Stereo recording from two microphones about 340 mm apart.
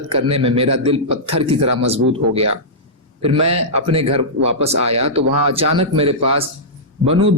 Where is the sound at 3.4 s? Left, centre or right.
Centre.